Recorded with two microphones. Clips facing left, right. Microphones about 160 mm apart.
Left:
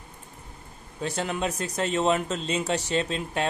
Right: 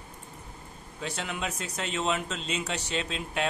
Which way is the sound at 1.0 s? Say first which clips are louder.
Left 6 dB; 40° left (ahead or behind).